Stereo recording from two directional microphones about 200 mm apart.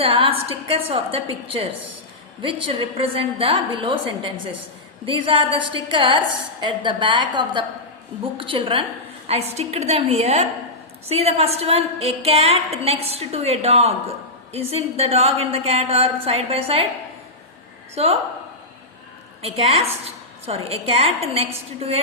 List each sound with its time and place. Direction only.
0.0 s a woman's voice: 25° right (ahead or behind)
17.9 s a woman's voice: 30° right (ahead or behind)
19.4 s a woman's voice: 30° right (ahead or behind)